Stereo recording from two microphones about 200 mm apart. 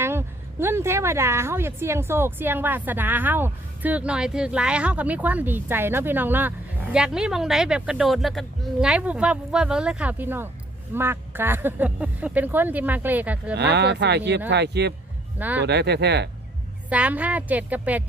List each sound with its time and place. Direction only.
0.0 s a woman's voice: 10° right (ahead or behind)
13.6 s speech: 55° right (ahead or behind)
15.4 s a woman's voice: 10° right (ahead or behind)
15.6 s speech: 55° right (ahead or behind)
16.9 s a woman's voice: 5° right (ahead or behind)